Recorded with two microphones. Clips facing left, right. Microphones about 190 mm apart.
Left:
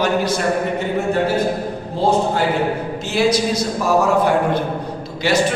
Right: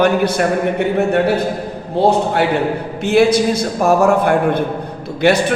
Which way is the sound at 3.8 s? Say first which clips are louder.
Right 4 dB; 55° right (ahead or behind).